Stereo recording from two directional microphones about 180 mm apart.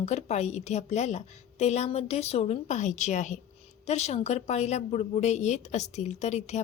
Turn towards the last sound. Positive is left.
turn(degrees=40)  # may be behind; listen again after turning